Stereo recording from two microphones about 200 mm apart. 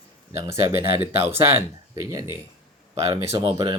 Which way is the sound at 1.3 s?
15° right (ahead or behind).